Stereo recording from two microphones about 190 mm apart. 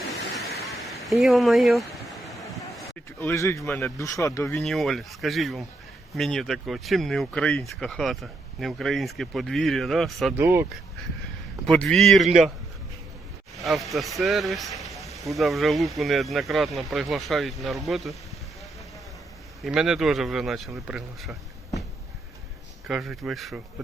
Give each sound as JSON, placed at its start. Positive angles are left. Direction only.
{"t": 1.0, "sound": "speech", "side_deg": 0}
{"t": 2.2, "sound": "vehicle", "side_deg": 0}
{"t": 3.2, "sound": "speech", "side_deg": 15}
{"t": 4.5, "sound": "speech", "side_deg": 0}
{"t": 10.3, "sound": "speech", "side_deg": -15}
{"t": 11.6, "sound": "speech", "side_deg": 0}
{"t": 12.2, "sound": "a man's voice", "side_deg": -40}
{"t": 13.6, "sound": "speech", "side_deg": 0}
{"t": 19.6, "sound": "speech", "side_deg": -5}
{"t": 22.9, "sound": "speech", "side_deg": 0}